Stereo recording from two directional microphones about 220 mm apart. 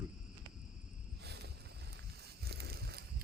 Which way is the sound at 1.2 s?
50° right (ahead or behind).